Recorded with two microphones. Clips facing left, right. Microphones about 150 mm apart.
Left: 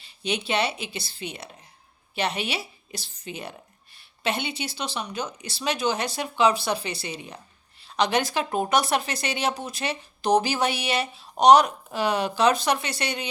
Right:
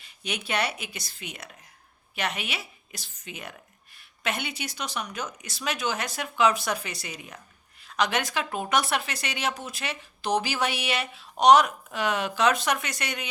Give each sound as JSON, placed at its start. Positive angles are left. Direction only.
{"t": 0.0, "sound": "speech", "side_deg": 30}